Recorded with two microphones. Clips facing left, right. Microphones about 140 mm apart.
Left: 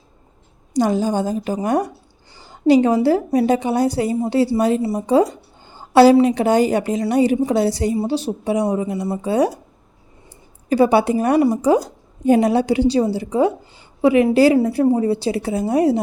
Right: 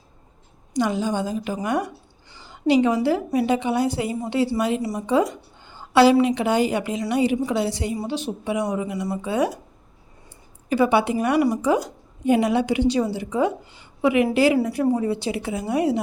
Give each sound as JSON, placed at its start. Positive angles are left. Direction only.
{"t": 0.7, "sound": "a woman's voice", "side_deg": 40}
{"t": 10.7, "sound": "a woman's voice", "side_deg": 35}
{"t": 11.3, "sound": "a woman's voice", "side_deg": 25}
{"t": 11.6, "sound": "a woman's voice", "side_deg": 35}